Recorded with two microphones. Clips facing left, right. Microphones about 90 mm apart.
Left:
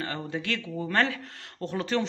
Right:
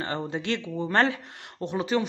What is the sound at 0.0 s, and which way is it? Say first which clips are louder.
Speech: right 2 dB; 25° right (ahead or behind).